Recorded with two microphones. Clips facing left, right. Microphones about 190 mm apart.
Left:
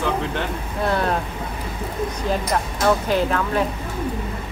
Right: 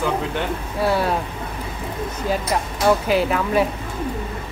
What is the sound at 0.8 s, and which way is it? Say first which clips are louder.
Speech: right 2 dB; 5° right (ahead or behind).